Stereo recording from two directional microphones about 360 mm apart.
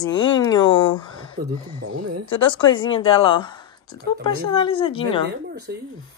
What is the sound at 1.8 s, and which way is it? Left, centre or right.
Speech, right.